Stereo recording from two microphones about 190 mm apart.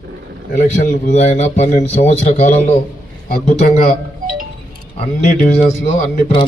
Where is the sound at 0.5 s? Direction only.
45° left (ahead or behind).